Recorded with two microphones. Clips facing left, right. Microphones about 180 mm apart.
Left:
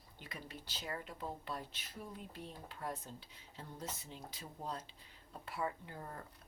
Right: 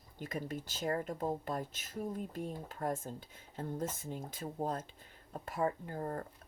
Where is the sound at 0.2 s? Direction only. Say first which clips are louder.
Right 11 dB; 45° right (ahead or behind).